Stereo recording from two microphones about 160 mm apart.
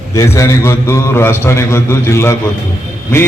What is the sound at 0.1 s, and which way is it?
A man's voice, 20° left (ahead or behind).